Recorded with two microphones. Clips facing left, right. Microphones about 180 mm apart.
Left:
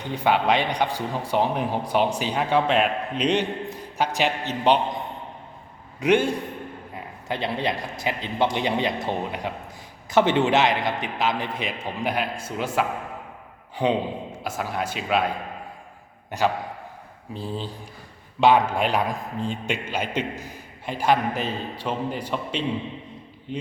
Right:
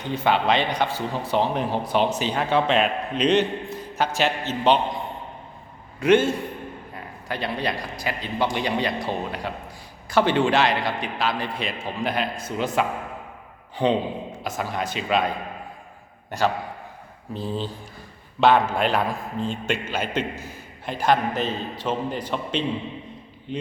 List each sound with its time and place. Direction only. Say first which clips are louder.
0.1 s a man's voice: even; 15° left (ahead or behind)
6.0 s a man's voice: right 2 dB; 15° left (ahead or behind)
17.3 s a man's voice: right 3 dB; 10° left (ahead or behind)